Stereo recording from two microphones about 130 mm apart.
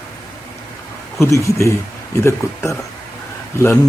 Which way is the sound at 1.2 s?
25° left (ahead or behind).